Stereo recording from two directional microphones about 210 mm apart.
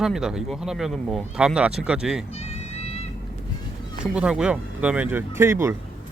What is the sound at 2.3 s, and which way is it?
Music, 30° left (ahead or behind).